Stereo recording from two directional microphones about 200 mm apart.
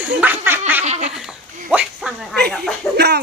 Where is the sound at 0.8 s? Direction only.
35° right (ahead or behind).